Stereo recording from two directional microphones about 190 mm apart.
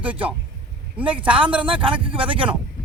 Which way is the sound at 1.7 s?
25° right (ahead or behind).